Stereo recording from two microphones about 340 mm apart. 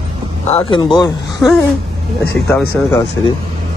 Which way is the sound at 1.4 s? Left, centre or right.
Centre.